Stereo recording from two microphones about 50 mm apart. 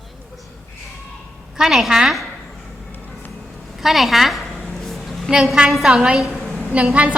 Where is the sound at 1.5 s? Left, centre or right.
Centre.